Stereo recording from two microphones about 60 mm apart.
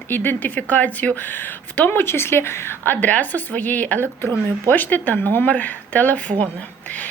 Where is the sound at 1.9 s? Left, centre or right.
Left.